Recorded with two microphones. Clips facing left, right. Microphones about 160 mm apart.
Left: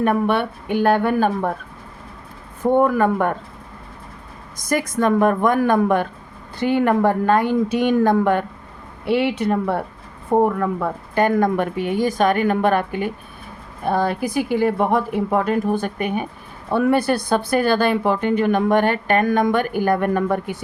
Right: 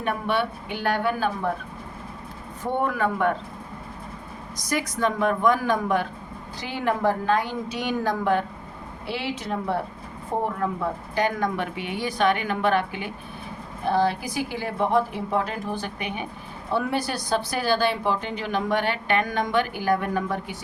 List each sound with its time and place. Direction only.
0.0 s speech: 50° left (ahead or behind)
2.7 s speech: 45° left (ahead or behind)
4.5 s speech: 50° left (ahead or behind)